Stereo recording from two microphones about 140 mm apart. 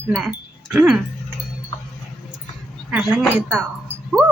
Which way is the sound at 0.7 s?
10° right (ahead or behind).